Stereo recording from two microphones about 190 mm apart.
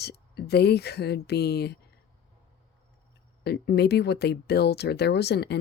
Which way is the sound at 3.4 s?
60° left (ahead or behind).